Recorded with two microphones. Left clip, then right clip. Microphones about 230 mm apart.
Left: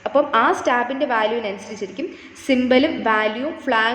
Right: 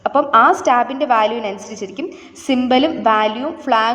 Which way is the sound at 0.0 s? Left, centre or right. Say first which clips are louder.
Right 5 dB; right.